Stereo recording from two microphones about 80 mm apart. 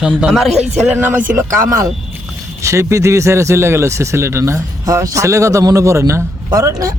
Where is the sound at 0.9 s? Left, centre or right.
Right.